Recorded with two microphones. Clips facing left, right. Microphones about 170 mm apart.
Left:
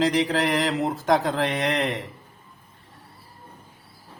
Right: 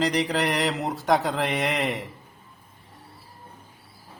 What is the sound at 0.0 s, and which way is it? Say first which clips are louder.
Speech: left 2 dB; centre (ahead or behind).